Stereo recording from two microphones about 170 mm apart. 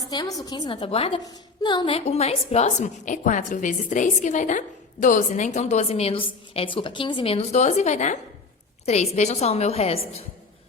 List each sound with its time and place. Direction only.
0.1 s a woman's voice: 20° left (ahead or behind)